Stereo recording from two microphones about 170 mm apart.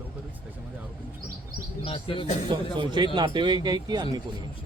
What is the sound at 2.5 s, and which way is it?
Speech, 25° right (ahead or behind).